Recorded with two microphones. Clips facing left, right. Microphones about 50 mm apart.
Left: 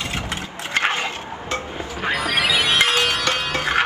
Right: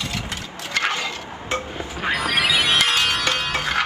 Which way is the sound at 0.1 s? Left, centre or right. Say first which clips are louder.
Left 2 dB; left.